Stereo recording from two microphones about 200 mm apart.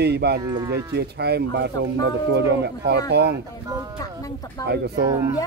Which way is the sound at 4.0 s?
15° left (ahead or behind).